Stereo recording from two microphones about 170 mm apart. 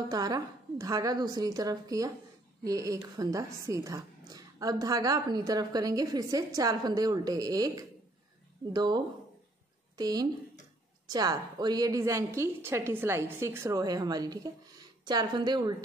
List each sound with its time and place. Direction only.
0.1 s a woman's voice: 20° right (ahead or behind)